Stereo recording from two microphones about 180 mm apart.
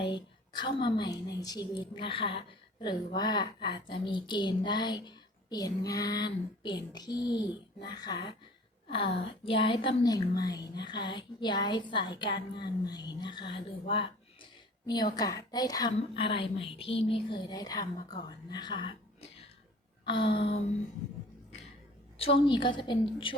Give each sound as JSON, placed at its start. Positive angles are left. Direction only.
{"t": 0.0, "sound": "a woman's voice", "side_deg": 25}
{"t": 20.3, "sound": "a woman's voice", "side_deg": 30}
{"t": 22.2, "sound": "a woman's voice", "side_deg": 30}